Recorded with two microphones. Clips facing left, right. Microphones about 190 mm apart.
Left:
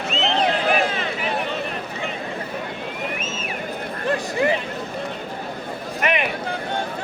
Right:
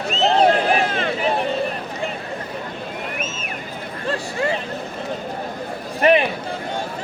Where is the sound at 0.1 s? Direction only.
40° right (ahead or behind).